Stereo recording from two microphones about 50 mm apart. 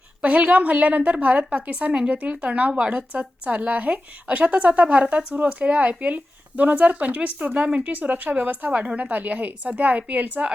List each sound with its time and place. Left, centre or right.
0.2 s a woman's voice: right